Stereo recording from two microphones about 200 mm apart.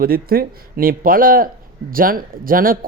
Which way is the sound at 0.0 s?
50° right (ahead or behind).